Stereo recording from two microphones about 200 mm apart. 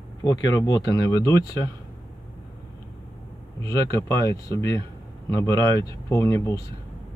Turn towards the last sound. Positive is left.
turn(degrees=15)  # may be behind; listen again after turning